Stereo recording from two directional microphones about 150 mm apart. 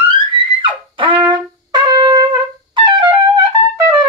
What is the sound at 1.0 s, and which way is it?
Brass instrument, 35° right (ahead or behind).